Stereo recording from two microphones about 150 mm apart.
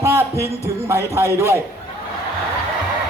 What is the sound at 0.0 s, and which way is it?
Music, 20° right (ahead or behind).